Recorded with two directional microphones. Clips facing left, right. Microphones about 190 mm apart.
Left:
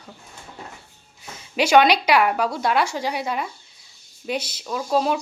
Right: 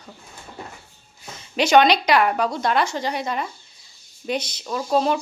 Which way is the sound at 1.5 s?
5° left (ahead or behind).